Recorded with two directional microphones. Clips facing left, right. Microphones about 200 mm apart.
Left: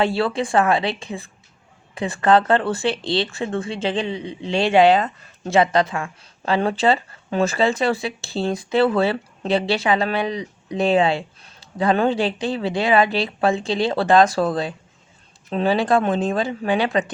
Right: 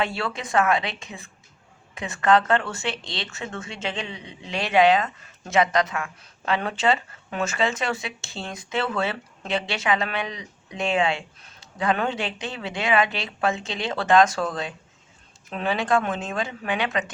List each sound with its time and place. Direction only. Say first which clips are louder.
0.0 s speech: left 7 dB; 30° left (ahead or behind)